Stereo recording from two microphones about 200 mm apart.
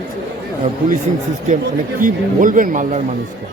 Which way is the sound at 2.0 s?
40° right (ahead or behind).